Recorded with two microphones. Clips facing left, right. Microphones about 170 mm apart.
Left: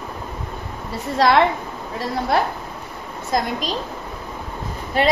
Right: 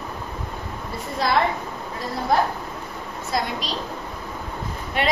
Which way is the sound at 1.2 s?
75° left (ahead or behind).